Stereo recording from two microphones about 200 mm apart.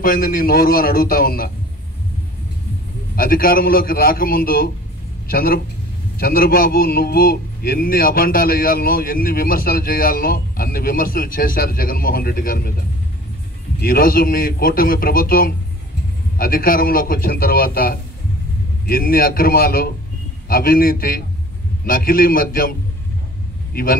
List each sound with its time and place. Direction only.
0.0 s a man's voice: 45° left (ahead or behind)
3.2 s a man's voice: 45° left (ahead or behind)
13.7 s a man's voice: 45° left (ahead or behind)